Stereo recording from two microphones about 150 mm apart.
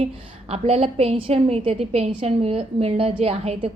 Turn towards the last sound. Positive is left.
turn(degrees=-40)  # may be behind; listen again after turning